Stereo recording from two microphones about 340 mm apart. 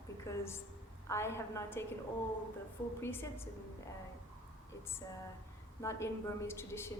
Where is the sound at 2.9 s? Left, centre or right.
Centre.